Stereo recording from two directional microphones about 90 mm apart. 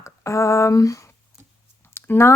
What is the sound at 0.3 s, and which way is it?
Speech, 35° left (ahead or behind).